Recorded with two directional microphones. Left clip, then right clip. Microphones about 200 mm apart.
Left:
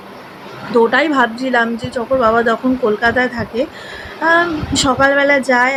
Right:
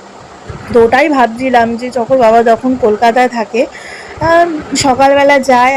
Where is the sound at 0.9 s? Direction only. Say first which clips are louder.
Right 5 dB; 15° right (ahead or behind).